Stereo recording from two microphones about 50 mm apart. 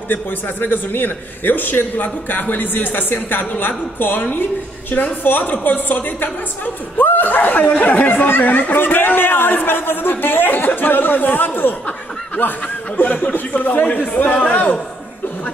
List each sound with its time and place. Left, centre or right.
0.1 s a woman's voice: left
13.0 s a woman's voice: left